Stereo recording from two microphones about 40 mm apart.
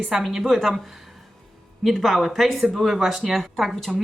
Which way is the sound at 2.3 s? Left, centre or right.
Centre.